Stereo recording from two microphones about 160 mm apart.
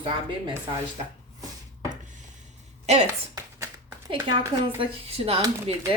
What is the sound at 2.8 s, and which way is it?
Speech, 45° right (ahead or behind).